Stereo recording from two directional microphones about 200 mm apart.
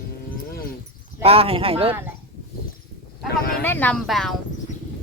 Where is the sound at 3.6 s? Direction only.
10° left (ahead or behind).